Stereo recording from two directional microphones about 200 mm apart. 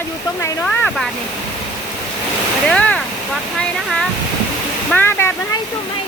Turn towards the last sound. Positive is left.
turn(degrees=10)  # may be behind; listen again after turning